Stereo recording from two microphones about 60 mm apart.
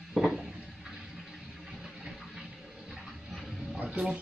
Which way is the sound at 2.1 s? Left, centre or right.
Centre.